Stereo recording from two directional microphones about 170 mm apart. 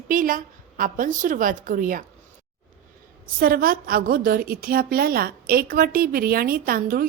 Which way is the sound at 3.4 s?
60° right (ahead or behind).